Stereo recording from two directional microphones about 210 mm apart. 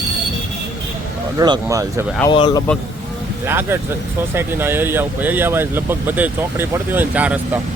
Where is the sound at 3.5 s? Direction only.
10° right (ahead or behind).